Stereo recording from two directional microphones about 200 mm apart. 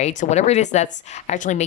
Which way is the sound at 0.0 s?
35° left (ahead or behind).